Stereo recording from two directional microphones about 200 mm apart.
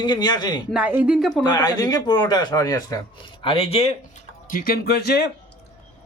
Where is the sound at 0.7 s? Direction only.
5° right (ahead or behind).